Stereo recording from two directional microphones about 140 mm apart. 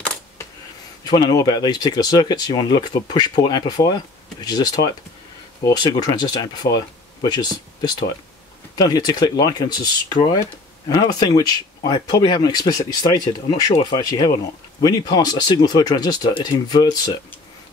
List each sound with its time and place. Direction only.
1.0 s speech: 30° left (ahead or behind)